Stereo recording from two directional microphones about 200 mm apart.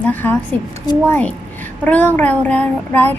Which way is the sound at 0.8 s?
20° left (ahead or behind).